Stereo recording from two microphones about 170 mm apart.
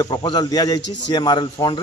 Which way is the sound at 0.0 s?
25° left (ahead or behind).